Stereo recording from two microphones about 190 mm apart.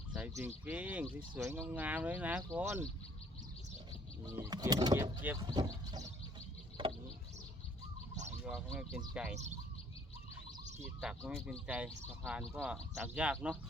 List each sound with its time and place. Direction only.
0.3 s speech: 10° right (ahead or behind)
4.3 s speech: 20° right (ahead or behind)
6.8 s a sound: 25° right (ahead or behind)
8.4 s speech: centre (ahead or behind)
11.0 s speech: 10° right (ahead or behind)